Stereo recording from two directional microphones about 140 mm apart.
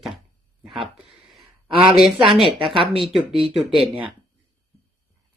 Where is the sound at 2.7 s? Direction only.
40° right (ahead or behind).